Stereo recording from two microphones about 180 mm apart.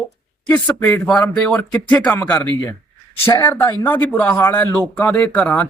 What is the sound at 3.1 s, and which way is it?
Speech, 30° left (ahead or behind).